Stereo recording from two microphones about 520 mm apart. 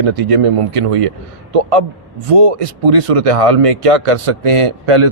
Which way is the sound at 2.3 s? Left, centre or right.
Right.